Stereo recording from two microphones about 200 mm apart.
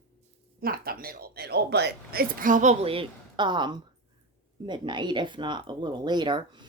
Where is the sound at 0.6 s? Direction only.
50° right (ahead or behind).